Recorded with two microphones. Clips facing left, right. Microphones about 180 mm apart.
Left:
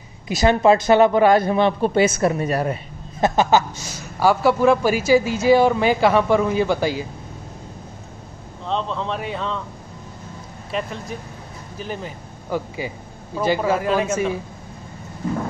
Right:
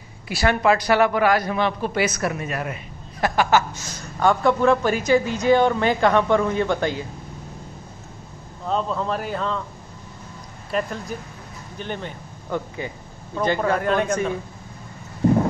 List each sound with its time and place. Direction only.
0.3 s a man's voice: 20° left (ahead or behind)
4.0 s a man's voice: 5° left (ahead or behind)
8.6 s speech: 5° right (ahead or behind)
10.7 s a man's voice: centre (ahead or behind)